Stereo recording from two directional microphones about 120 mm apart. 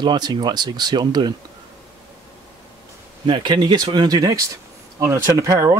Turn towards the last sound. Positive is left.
turn(degrees=-25)  # may be behind; listen again after turning